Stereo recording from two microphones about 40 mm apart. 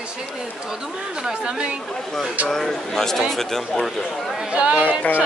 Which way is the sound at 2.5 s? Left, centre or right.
Centre.